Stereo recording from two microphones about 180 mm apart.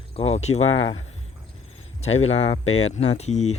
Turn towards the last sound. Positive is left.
turn(degrees=40)  # may be behind; listen again after turning